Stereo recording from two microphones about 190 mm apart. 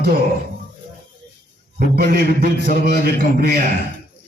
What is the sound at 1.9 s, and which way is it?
A man's voice, 55° right (ahead or behind).